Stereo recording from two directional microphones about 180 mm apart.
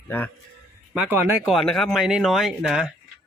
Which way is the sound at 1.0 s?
10° right (ahead or behind).